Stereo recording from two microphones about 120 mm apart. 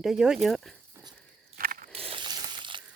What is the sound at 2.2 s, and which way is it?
Crushing, 35° right (ahead or behind).